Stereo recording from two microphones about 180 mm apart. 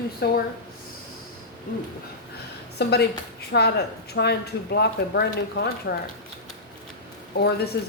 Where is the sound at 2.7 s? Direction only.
65° left (ahead or behind).